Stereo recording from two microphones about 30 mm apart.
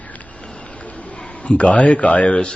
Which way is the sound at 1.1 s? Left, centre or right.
Left.